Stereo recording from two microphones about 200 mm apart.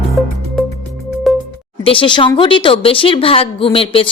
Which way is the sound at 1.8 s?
25° left (ahead or behind).